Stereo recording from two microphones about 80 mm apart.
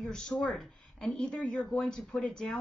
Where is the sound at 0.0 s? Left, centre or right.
Centre.